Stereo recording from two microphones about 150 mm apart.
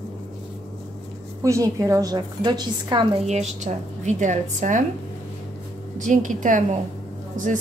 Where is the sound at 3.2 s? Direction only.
50° right (ahead or behind).